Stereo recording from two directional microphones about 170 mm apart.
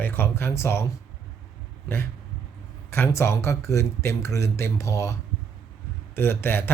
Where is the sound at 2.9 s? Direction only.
15° left (ahead or behind).